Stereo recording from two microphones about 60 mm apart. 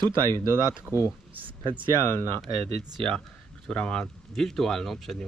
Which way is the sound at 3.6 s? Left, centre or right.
Centre.